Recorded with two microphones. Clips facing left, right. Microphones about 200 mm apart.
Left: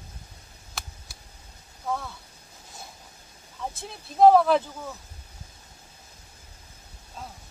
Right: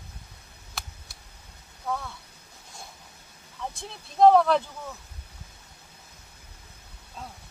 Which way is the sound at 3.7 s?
5° left (ahead or behind).